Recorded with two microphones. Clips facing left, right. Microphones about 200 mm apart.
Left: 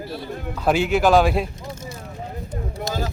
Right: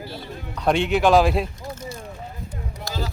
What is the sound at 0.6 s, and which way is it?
Speech, centre (ahead or behind).